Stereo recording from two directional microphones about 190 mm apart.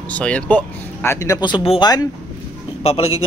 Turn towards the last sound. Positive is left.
turn(degrees=30)  # may be behind; listen again after turning